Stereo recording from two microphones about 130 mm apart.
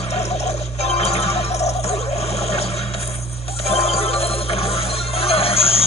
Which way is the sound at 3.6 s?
50° left (ahead or behind).